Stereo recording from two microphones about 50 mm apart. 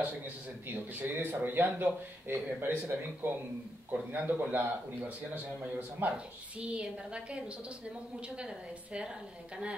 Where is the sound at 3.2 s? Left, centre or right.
Right.